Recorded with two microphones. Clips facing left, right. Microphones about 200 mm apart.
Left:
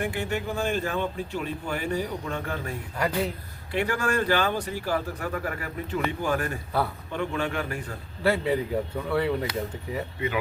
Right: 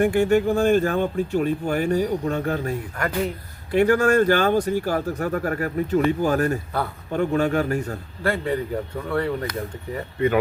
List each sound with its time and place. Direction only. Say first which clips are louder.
0.0 s speech: right 11 dB; 45° right (ahead or behind)
8.2 s speech: even; 5° left (ahead or behind)